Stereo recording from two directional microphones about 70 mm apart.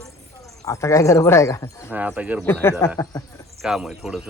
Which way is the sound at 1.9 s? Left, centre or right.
Right.